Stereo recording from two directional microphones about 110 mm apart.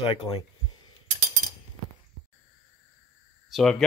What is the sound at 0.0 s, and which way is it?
Speech, 45° left (ahead or behind).